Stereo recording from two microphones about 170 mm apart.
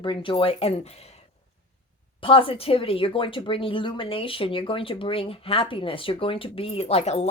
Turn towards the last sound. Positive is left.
turn(degrees=35)  # may be behind; listen again after turning